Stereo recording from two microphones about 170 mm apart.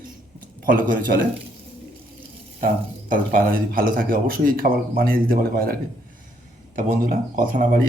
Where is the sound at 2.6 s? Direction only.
50° right (ahead or behind).